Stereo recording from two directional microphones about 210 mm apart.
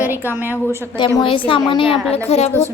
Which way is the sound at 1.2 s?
25° left (ahead or behind).